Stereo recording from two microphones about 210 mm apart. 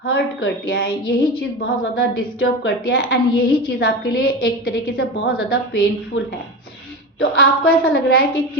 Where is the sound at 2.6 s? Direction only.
55° left (ahead or behind).